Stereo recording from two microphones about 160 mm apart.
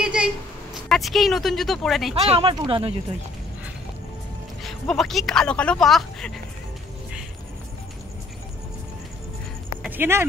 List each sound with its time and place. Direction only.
0.0 s a sound: 5° right (ahead or behind)
0.8 s speech: centre (ahead or behind)
2.1 s speech: 40° right (ahead or behind)
4.6 s speech: centre (ahead or behind)
9.8 s speech: 15° right (ahead or behind)